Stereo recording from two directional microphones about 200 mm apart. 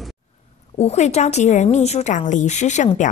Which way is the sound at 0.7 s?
35° left (ahead or behind).